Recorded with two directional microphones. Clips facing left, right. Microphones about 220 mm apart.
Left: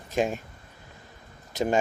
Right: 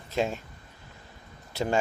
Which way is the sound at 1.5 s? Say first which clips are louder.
Left 2 dB; 15° left (ahead or behind).